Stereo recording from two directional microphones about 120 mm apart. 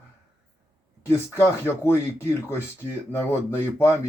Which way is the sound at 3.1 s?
20° left (ahead or behind).